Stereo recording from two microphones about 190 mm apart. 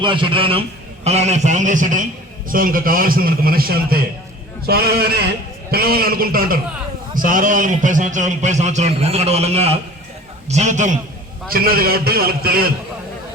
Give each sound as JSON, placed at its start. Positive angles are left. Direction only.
{"t": 0.0, "sound": "a man's voice", "side_deg": -25}
{"t": 11.5, "sound": "a man's voice", "side_deg": -50}